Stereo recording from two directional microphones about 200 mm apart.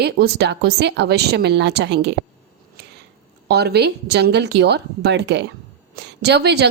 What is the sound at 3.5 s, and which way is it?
A woman's voice, 55° right (ahead or behind).